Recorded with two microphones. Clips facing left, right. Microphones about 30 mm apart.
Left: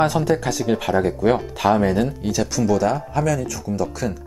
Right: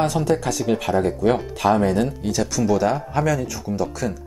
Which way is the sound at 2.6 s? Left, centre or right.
Centre.